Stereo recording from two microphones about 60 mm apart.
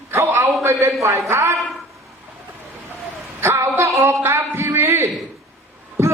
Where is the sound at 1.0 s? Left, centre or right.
Right.